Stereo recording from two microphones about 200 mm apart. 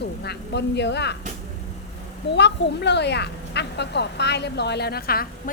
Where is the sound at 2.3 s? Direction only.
60° left (ahead or behind).